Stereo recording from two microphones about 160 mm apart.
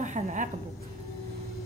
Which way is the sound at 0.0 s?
50° right (ahead or behind).